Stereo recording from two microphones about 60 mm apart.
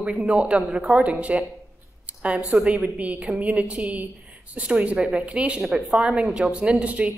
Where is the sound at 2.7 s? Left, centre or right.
Right.